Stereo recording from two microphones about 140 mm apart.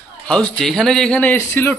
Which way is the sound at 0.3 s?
5° left (ahead or behind).